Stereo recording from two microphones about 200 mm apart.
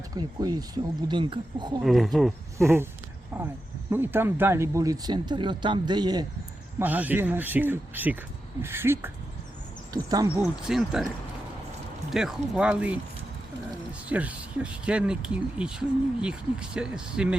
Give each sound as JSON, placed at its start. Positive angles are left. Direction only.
{"t": 0.2, "sound": "speech", "side_deg": -20}
{"t": 1.8, "sound": "speech", "side_deg": 0}
{"t": 2.6, "sound": "speech", "side_deg": -10}
{"t": 6.7, "sound": "speech", "side_deg": -10}
{"t": 10.4, "sound": "speech", "side_deg": 0}
{"t": 12.1, "sound": "speech", "side_deg": -5}
{"t": 14.1, "sound": "speech", "side_deg": -5}